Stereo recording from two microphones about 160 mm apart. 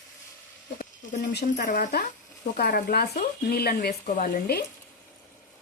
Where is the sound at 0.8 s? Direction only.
80° left.